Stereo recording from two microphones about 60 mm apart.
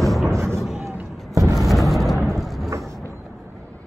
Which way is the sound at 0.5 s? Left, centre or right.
Centre.